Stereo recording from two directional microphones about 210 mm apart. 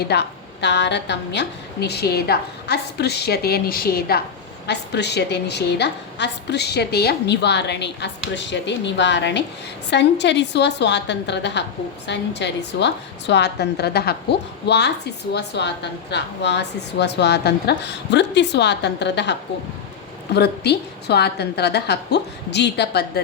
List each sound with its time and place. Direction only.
0.1 s a woman's voice: 55° left (ahead or behind)